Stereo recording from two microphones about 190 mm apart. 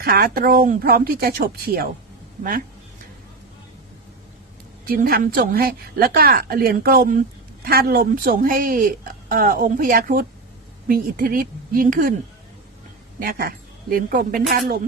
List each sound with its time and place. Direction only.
0.0 s a woman's voice: 55° right (ahead or behind)
4.9 s a woman's voice: 50° right (ahead or behind)
13.1 s a woman's voice: 50° right (ahead or behind)